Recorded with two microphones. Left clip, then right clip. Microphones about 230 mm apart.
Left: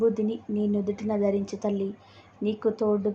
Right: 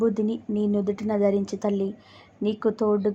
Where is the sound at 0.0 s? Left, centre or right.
Right.